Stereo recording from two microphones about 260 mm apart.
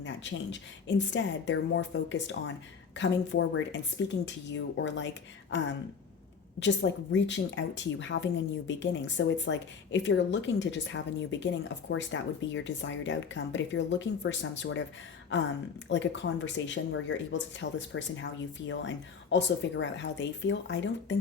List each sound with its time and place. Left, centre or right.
0.0 s a woman's voice: left
15.9 s a woman's voice: left